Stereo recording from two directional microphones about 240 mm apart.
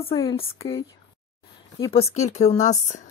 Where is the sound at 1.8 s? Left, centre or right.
Left.